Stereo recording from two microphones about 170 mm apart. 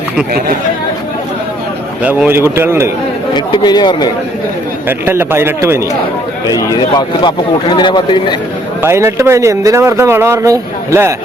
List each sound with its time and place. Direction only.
2.0 s a man's voice: 10° right (ahead or behind)
3.3 s a man's voice: 25° left (ahead or behind)
4.9 s a man's voice: 15° right (ahead or behind)
6.6 s a man's voice: 25° left (ahead or behind)
8.8 s a man's voice: 15° right (ahead or behind)